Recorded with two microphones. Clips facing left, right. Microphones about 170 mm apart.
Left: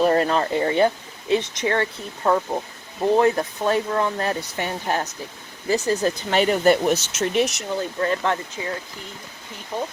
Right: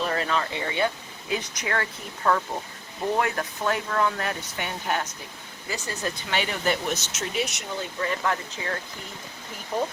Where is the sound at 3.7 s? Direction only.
30° left (ahead or behind).